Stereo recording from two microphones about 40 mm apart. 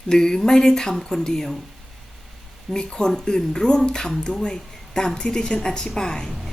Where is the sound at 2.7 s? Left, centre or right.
Centre.